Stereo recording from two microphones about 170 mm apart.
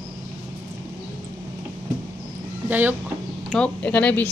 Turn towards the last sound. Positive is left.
turn(degrees=10)  # may be behind; listen again after turning